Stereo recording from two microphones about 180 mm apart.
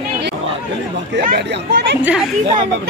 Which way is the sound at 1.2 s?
65° right (ahead or behind).